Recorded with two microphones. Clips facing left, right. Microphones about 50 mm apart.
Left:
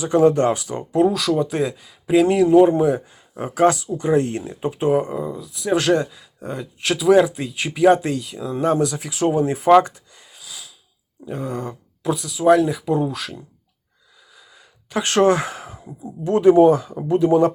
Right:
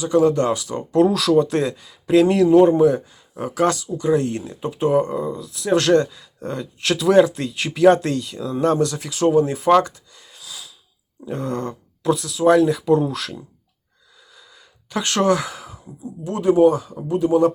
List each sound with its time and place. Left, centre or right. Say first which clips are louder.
0.0 s speech: left 1 dB; left
0.8 s speech: right 2 dB; centre
9.8 s a sound: right 1 dB; left
10.3 s gasp: right 1 dB; centre
11.3 s speech: right 2 dB; centre; by 17.5 s left